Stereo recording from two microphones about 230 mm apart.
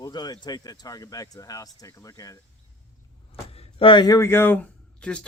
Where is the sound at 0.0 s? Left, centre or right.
Centre.